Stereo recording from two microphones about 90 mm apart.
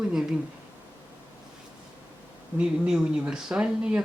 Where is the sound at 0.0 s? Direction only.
5° right (ahead or behind).